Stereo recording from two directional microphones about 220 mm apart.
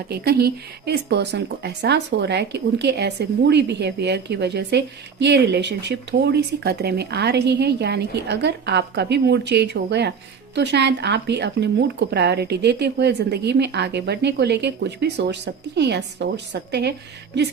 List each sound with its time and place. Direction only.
0.1 s speech: 45° right (ahead or behind)